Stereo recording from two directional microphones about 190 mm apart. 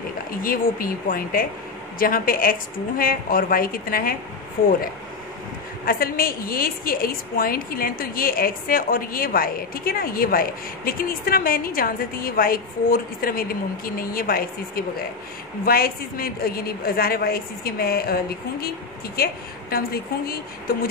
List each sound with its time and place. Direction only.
0.4 s a woman's voice: 50° left (ahead or behind)
5.9 s a woman's voice: 50° left (ahead or behind)